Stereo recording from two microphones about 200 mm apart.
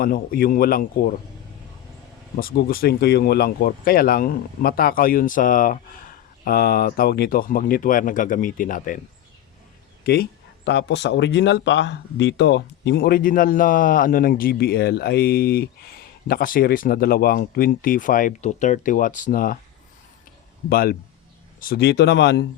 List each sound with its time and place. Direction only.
0.0 s speech: 45° left (ahead or behind)
2.4 s speech: 45° left (ahead or behind)
10.7 s speech: 60° left (ahead or behind)
20.7 s speech: 50° left (ahead or behind)